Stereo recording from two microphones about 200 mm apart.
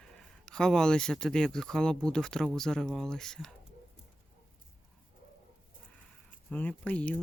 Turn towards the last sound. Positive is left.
turn(degrees=5)  # may be behind; listen again after turning